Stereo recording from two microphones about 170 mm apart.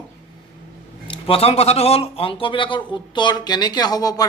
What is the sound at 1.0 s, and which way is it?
Speech, 35° left (ahead or behind).